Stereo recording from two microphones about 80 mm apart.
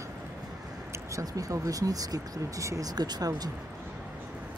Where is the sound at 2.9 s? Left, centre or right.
Right.